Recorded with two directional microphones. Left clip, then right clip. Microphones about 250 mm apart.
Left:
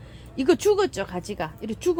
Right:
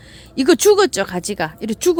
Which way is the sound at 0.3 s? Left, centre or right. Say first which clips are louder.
Right 8 dB; right.